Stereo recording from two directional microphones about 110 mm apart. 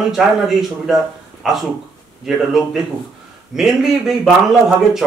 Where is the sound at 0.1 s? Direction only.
5° right (ahead or behind).